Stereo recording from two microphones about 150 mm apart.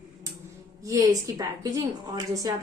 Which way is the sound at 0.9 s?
25° right (ahead or behind).